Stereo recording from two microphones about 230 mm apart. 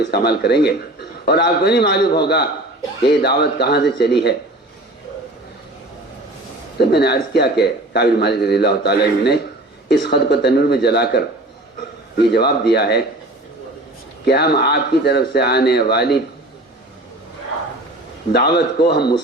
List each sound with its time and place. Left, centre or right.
0.0 s a man's voice: left
6.7 s a man's voice: left
14.3 s a man's voice: left
18.3 s a man's voice: left